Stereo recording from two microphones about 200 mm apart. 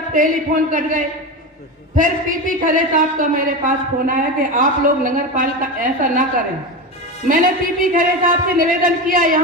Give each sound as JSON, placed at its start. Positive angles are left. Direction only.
{"t": 0.1, "sound": "a man's voice", "side_deg": -45}